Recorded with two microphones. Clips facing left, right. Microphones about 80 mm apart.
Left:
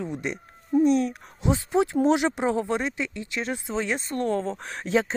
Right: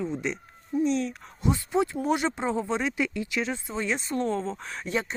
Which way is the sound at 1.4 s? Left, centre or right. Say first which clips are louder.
Left 2 dB; left.